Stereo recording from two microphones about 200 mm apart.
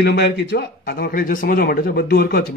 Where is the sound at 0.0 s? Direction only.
55° left (ahead or behind).